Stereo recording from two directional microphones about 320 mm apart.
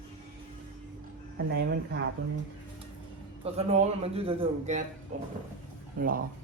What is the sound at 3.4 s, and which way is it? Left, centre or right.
Speech, centre.